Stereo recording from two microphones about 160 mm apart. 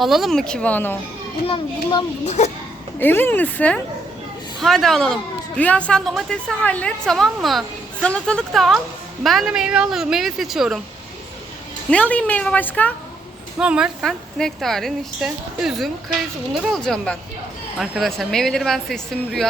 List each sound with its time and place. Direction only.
0.0 s a woman's voice: centre (ahead or behind)
1.5 s a child's voice: 30° left (ahead or behind)
2.2 s speech: 45° left (ahead or behind)
3.0 s a woman's voice: 15° left (ahead or behind); by 10.8 s centre (ahead or behind)
11.9 s speech: 10° left (ahead or behind)
13.6 s a woman's voice: 5° right (ahead or behind)